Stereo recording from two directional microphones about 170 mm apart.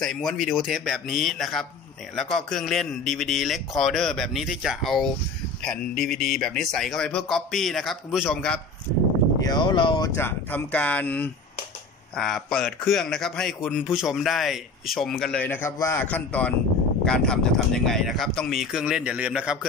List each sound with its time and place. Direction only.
0.0 s a man's voice: centre (ahead or behind)
9.4 s speech: 25° left (ahead or behind)
10.1 s a man's voice: 10° left (ahead or behind); by 19.6 s 5° right (ahead or behind)